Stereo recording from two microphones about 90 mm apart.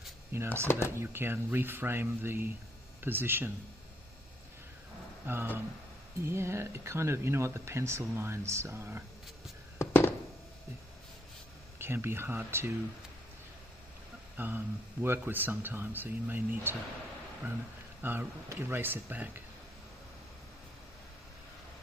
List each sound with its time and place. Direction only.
0.3 s speech: 30° right (ahead or behind)
0.7 s speech: 30° left (ahead or behind)
0.9 s speech: 25° right (ahead or behind)
5.2 s speech: 25° right (ahead or behind)
9.8 s a sound: 25° left (ahead or behind)
11.8 s speech: 25° right (ahead or behind)
14.3 s speech: 20° right (ahead or behind)
18.0 s speech: 25° right (ahead or behind)